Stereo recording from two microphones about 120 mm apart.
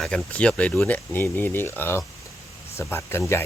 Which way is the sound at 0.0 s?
5° left (ahead or behind).